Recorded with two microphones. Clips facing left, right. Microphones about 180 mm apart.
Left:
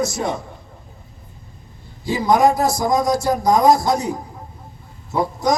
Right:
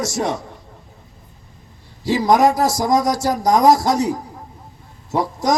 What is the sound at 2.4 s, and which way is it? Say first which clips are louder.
A man's voice: even; 90° right.